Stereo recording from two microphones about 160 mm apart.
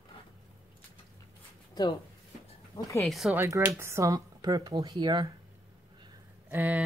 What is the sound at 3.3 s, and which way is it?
Speech, 15° right (ahead or behind).